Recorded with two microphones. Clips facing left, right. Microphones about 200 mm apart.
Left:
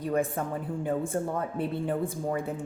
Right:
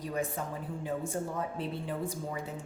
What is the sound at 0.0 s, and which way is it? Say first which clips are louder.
Speech: left 6 dB; 55° left (ahead or behind).